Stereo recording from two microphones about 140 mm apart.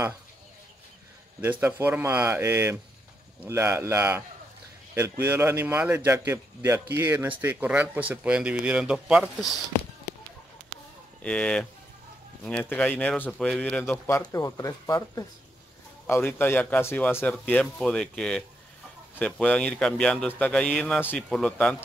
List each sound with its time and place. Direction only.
1.4 s speech: 15° right (ahead or behind)
5.2 s speech: 15° right (ahead or behind)
11.2 s a man's voice: 5° left (ahead or behind); by 15.2 s 25° left (ahead or behind)
16.1 s a man's voice: 15° left (ahead or behind)